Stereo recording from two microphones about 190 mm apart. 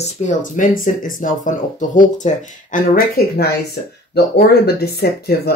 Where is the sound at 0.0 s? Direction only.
40° left (ahead or behind).